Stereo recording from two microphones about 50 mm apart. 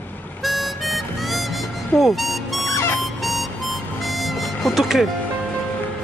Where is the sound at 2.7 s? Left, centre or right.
Left.